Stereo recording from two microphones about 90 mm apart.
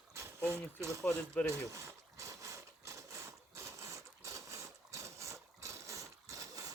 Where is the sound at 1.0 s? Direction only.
15° left (ahead or behind).